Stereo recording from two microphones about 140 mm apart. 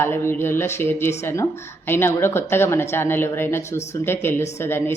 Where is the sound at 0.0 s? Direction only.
15° left (ahead or behind).